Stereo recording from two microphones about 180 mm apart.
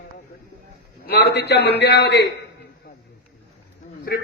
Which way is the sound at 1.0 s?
60° left (ahead or behind).